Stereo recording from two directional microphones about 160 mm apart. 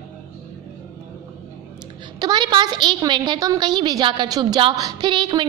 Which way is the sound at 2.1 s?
25° right (ahead or behind).